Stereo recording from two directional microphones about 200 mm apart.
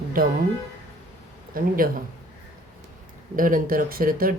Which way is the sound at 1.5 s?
45° right (ahead or behind).